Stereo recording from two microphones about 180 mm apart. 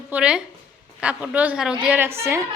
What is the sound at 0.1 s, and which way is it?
A woman's voice, 5° right (ahead or behind).